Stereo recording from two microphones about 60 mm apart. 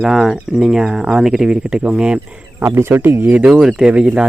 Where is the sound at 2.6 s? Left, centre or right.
Right.